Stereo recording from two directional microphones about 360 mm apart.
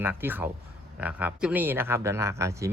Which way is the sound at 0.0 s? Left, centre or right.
Centre.